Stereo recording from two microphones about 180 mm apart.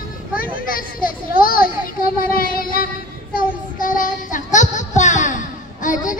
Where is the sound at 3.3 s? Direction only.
50° left (ahead or behind).